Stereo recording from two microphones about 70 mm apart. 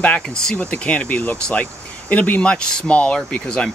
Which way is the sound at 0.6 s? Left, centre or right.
Left.